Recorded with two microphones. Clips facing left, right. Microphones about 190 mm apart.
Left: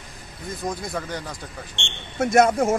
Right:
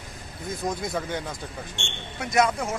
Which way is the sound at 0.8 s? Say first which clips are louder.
Right 1 dB; 5° right (ahead or behind).